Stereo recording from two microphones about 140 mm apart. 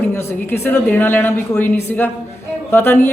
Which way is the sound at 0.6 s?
15° left (ahead or behind).